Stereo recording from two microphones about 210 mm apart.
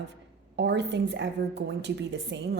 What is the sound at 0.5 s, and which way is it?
A woman's voice, 55° right (ahead or behind).